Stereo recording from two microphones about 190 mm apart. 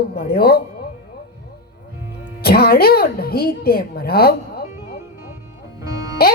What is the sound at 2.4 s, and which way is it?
Speech, 55° left (ahead or behind).